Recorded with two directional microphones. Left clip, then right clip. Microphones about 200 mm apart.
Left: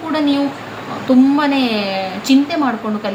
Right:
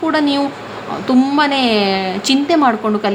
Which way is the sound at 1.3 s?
50° right (ahead or behind).